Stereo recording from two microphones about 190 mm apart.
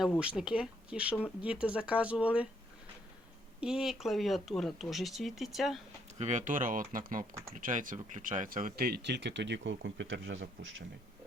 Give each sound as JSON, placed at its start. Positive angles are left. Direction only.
{"t": 0.2, "sound": "speech", "side_deg": -5}
{"t": 3.6, "sound": "speech", "side_deg": -5}
{"t": 6.1, "sound": "speech", "side_deg": -40}